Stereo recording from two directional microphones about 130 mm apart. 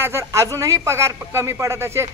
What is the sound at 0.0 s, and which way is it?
Speech, 20° right (ahead or behind).